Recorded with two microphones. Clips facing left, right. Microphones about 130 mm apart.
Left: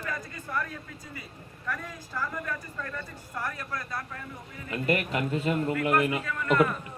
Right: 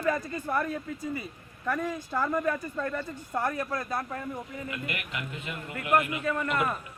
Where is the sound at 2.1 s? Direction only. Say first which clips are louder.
Right 6 dB; 40° right (ahead or behind).